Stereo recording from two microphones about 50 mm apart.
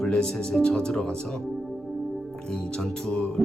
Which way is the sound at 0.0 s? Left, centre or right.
Centre.